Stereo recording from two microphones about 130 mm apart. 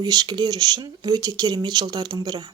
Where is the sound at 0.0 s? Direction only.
30° right (ahead or behind).